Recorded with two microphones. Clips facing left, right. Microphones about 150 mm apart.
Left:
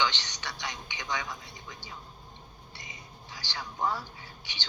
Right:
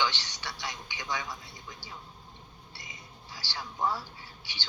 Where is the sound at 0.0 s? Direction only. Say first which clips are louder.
Left 1 dB; 20° left (ahead or behind).